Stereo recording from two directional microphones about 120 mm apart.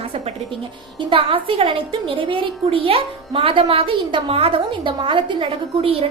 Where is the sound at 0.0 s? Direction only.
50° right (ahead or behind).